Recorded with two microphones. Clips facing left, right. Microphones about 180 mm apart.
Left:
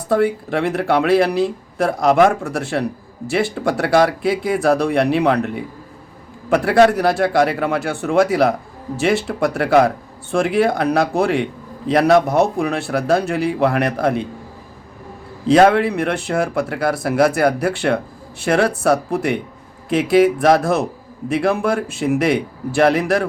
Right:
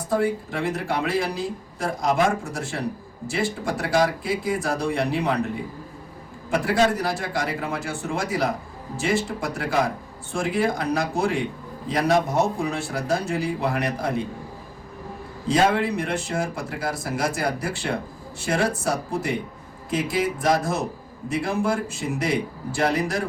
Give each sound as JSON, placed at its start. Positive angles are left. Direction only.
{"t": 0.1, "sound": "speech", "side_deg": 65}
{"t": 6.5, "sound": "a man's voice", "side_deg": 65}
{"t": 15.4, "sound": "a man's voice", "side_deg": 65}